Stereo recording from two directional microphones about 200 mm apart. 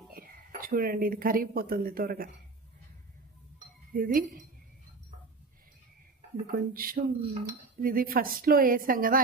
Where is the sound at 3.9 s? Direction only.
45° right (ahead or behind).